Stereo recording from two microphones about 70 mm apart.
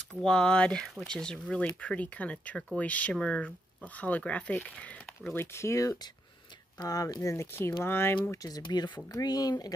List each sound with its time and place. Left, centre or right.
0.0 s speech: centre
5.3 s speech: left
6.8 s speech: left
7.3 s speech: left
8.3 s speech: left
9.1 s speech: left